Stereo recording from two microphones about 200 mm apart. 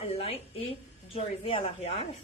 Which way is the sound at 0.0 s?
30° left (ahead or behind).